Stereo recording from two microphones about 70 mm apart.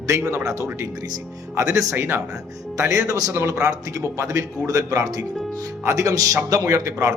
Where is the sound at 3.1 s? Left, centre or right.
Right.